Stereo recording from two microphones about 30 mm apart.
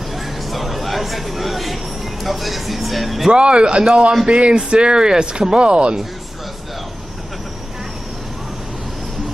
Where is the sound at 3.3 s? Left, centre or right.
Right.